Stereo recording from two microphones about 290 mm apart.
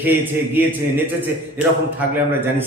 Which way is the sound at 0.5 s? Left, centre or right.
Centre.